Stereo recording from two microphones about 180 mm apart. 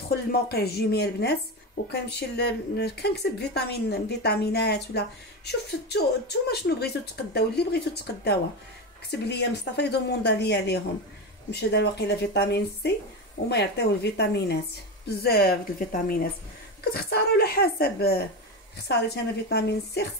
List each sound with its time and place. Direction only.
0.3 s a woman's voice: 60° left (ahead or behind)